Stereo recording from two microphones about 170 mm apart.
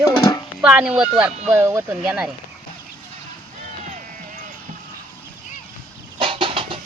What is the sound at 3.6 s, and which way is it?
Music, 45° right (ahead or behind).